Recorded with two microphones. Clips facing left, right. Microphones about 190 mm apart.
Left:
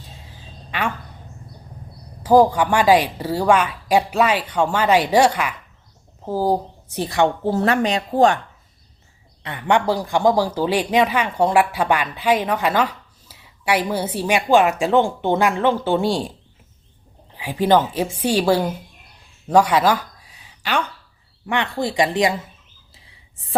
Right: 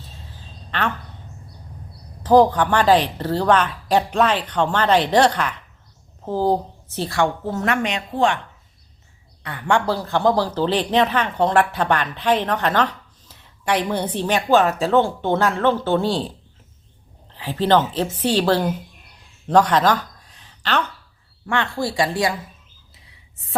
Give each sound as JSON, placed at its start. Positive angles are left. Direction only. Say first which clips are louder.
{"t": 0.7, "sound": "speech", "louder": "even", "side_deg": 10}
{"t": 2.2, "sound": "a woman's voice", "louder": "even", "side_deg": 10}
{"t": 7.4, "sound": "speech", "louder": "left 4 dB", "side_deg": 30}
{"t": 9.4, "sound": "speech", "louder": "left 1 dB", "side_deg": 20}
{"t": 17.3, "sound": "speech", "louder": "left 1 dB", "side_deg": 10}
{"t": 19.5, "sound": "a sound", "louder": "even", "side_deg": 10}
{"t": 21.4, "sound": "speech", "louder": "left 1 dB", "side_deg": 15}